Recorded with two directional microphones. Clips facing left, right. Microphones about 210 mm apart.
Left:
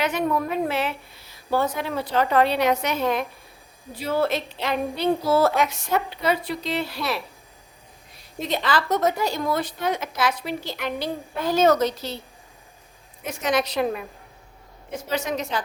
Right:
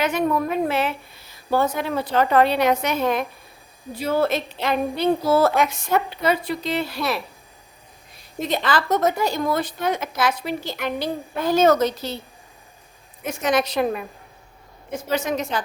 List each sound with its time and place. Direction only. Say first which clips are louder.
0.0 s a woman's voice: right 2 dB; 45° right (ahead or behind)
8.4 s a woman's voice: right 2 dB; 50° right (ahead or behind)
13.2 s a woman's voice: right 2 dB; 50° right (ahead or behind)